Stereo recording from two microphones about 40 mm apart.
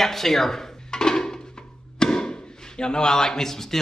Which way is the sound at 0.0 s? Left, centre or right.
Centre.